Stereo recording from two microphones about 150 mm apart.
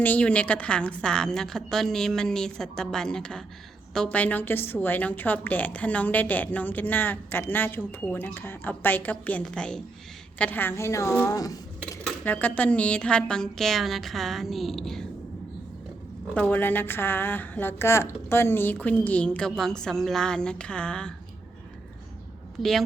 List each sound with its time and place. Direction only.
0.0 s a woman's voice: 10° left (ahead or behind)
12.0 s a woman's voice: 10° left (ahead or behind)
16.3 s a woman's voice: 10° left (ahead or behind)
22.6 s a woman's voice: centre (ahead or behind)